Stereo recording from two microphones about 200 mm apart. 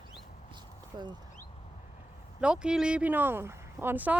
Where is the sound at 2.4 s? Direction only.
5° right (ahead or behind).